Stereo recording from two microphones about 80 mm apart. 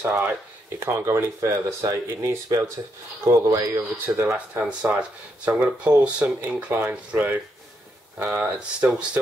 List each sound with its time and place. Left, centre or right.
0.0 s speech: centre
0.7 s speech: right
4.1 s speech: right
4.6 s speech: centre